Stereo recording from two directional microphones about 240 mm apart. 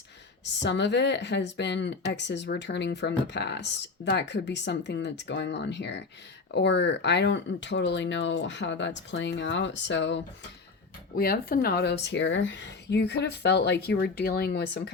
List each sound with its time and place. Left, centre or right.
0.4 s speech: left
11.1 s speech: left